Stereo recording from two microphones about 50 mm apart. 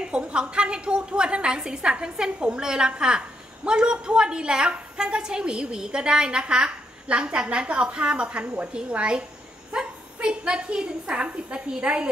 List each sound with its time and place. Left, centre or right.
0.0 s a woman's voice: right